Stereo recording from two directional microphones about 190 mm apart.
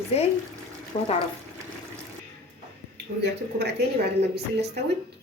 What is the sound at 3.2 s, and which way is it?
Speech, 60° right (ahead or behind).